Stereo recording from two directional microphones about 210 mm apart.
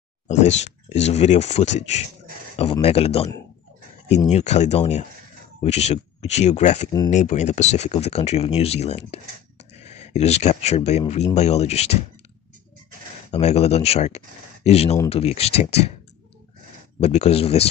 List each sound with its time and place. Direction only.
0.3 s speech: 35° left (ahead or behind)
4.3 s speech: 35° left (ahead or behind)
13.3 s speech: 30° left (ahead or behind)
17.0 s speech: 30° left (ahead or behind)